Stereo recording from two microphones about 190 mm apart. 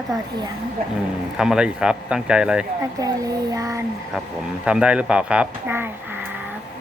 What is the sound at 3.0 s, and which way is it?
Speech, 15° right (ahead or behind).